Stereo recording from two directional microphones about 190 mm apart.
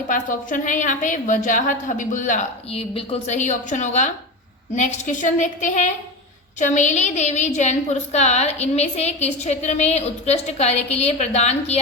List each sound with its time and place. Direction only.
0.1 s a woman's voice: 45° left (ahead or behind)